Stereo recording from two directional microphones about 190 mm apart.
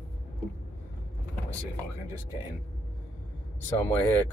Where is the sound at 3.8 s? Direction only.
20° left (ahead or behind).